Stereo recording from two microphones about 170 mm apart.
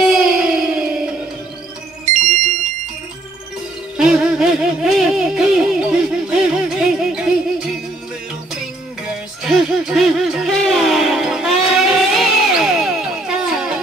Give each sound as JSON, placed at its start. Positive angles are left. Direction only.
{"t": 0.0, "sound": "music", "side_deg": -5}
{"t": 2.0, "sound": "music", "side_deg": -45}
{"t": 3.9, "sound": "music", "side_deg": -5}
{"t": 9.4, "sound": "music", "side_deg": 0}